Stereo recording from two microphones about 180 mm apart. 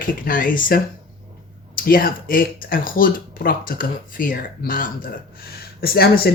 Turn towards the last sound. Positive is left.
turn(degrees=60)  # may be behind; listen again after turning